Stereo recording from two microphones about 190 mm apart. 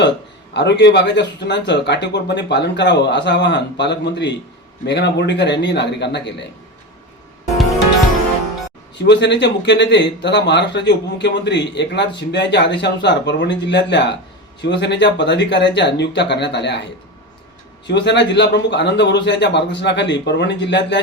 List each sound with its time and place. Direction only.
0.5 s speech: 65° left (ahead or behind)
9.0 s speech: 65° left (ahead or behind)
17.8 s speech: 65° left (ahead or behind)